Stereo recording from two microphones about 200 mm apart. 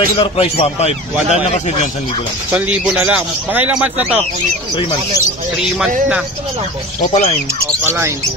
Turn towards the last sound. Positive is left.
turn(degrees=35)  # may be behind; listen again after turning